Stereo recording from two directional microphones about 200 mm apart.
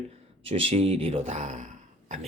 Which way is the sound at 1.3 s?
35° right (ahead or behind).